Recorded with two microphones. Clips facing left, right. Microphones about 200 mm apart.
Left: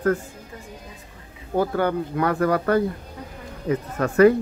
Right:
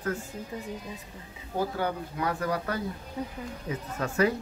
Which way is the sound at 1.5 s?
65° left (ahead or behind).